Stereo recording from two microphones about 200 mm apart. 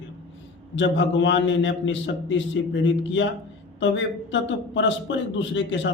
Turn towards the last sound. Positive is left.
turn(degrees=65)  # may be behind; listen again after turning